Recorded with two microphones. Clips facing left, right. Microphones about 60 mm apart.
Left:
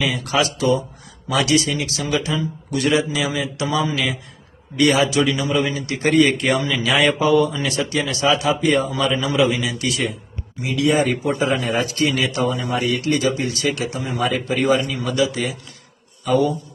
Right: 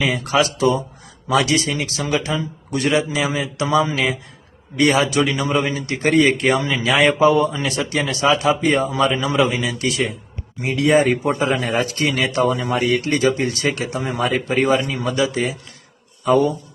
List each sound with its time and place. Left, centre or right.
0.0 s a man's voice: right